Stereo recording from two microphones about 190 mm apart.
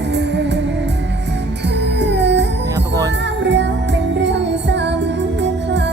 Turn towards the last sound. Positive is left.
turn(degrees=-65)  # may be behind; listen again after turning